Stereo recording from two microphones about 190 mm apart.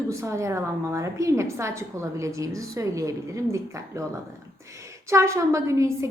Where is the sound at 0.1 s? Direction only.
15° right (ahead or behind).